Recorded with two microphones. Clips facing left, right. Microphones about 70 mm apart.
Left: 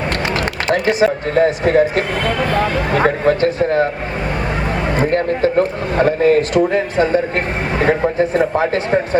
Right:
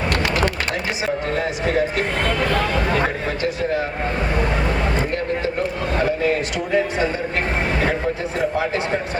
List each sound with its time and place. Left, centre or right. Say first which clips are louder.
0.9 s a man's voice: left 9 dB; left
4.9 s speech: left 7 dB; left
7.9 s speech: left 7 dB; left